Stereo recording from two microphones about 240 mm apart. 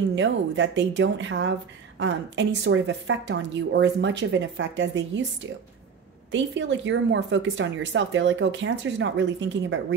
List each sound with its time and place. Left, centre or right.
0.1 s speech: right